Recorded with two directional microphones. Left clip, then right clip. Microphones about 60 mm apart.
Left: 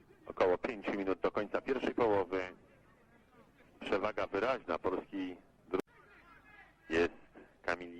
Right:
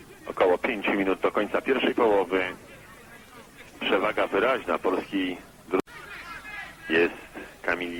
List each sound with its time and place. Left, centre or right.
0.3 s speech: right
3.8 s speech: right
6.5 s a sound: right